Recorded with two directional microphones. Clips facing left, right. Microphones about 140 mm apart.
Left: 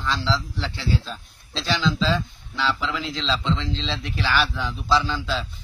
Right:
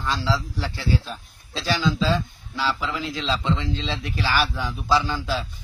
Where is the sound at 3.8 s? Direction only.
45° right (ahead or behind).